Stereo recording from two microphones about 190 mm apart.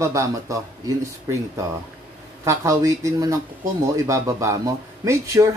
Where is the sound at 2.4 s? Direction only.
15° right (ahead or behind).